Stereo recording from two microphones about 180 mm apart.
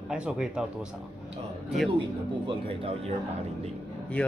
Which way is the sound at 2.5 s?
30° right (ahead or behind).